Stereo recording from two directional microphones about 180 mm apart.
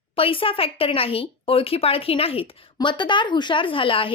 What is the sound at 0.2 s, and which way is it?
A woman's voice, 30° left (ahead or behind).